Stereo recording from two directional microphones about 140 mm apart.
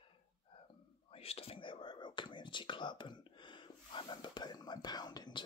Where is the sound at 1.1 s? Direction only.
45° left (ahead or behind).